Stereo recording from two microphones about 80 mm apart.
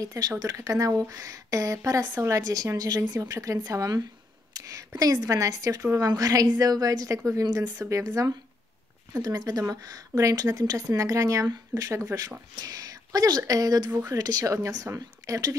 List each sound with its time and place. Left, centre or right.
0.0 s a woman's voice: right
7.4 s a woman's voice: right
14.4 s a woman's voice: right